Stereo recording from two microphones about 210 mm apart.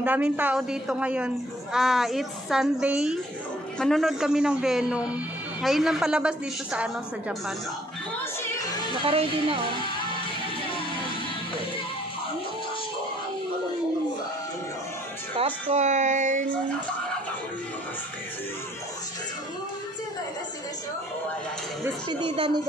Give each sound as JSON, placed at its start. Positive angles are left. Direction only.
{"t": 0.0, "sound": "a woman's voice", "side_deg": -10}
{"t": 9.0, "sound": "speech", "side_deg": -25}
{"t": 15.3, "sound": "speech", "side_deg": -30}
{"t": 22.2, "sound": "speech", "side_deg": -20}